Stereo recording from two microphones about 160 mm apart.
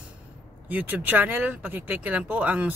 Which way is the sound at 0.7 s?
10° right (ahead or behind).